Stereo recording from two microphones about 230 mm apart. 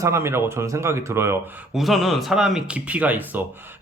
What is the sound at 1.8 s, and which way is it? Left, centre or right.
Speech, centre.